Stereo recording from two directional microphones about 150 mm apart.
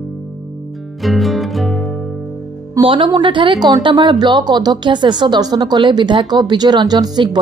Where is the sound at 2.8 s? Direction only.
35° right (ahead or behind).